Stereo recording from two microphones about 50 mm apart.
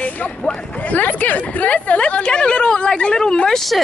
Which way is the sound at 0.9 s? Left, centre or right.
Left.